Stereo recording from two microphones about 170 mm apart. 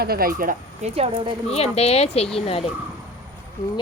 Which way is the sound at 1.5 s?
35° left (ahead or behind).